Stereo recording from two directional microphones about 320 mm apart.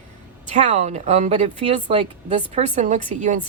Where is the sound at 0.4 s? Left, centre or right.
Right.